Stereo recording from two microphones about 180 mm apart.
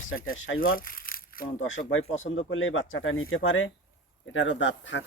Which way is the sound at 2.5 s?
90° left.